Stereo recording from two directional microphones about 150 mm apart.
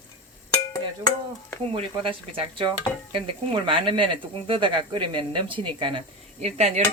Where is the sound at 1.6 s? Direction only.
40° right (ahead or behind).